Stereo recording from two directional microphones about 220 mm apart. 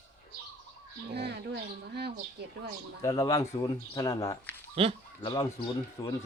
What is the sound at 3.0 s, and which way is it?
Speech, 15° left (ahead or behind).